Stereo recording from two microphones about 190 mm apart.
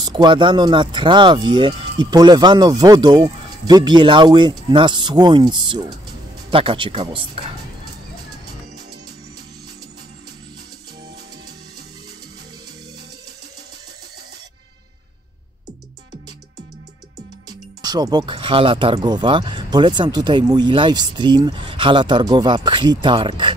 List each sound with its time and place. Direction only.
0.0 s speech: 25° right (ahead or behind)
17.8 s speech: 20° right (ahead or behind)